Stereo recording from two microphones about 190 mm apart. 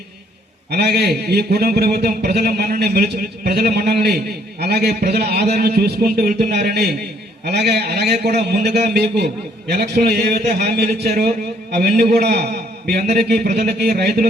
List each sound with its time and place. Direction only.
0.7 s a man's voice: 60° right (ahead or behind)